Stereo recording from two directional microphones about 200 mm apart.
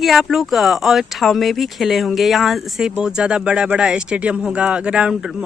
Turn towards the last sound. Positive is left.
turn(degrees=-5)  # may be behind; listen again after turning